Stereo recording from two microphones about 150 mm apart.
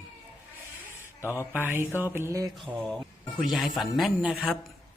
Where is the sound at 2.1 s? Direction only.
20° right (ahead or behind).